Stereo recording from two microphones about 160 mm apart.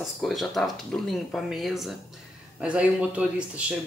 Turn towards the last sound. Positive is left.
turn(degrees=-5)  # may be behind; listen again after turning